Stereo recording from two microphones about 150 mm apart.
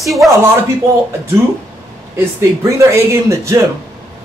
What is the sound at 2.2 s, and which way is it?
Speech, 20° right (ahead or behind).